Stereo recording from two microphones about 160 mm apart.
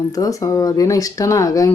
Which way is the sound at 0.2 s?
20° left (ahead or behind).